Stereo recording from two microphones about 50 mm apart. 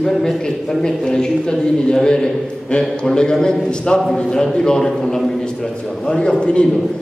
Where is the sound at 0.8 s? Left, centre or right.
Centre.